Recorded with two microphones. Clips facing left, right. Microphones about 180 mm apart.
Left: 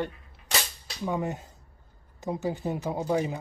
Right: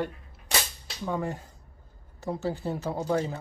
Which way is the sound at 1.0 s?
15° left (ahead or behind).